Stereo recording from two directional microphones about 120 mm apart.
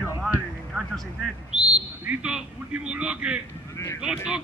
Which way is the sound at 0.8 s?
Centre (ahead or behind).